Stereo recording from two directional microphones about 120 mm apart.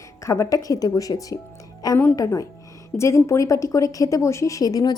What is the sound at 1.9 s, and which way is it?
Speech, 15° left (ahead or behind).